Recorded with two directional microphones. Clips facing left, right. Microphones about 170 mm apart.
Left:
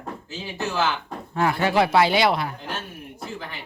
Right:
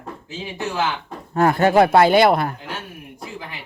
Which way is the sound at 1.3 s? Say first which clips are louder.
Right 6 dB; 50° right (ahead or behind).